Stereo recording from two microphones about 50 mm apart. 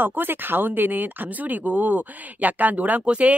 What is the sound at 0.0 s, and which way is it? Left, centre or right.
Speech, right.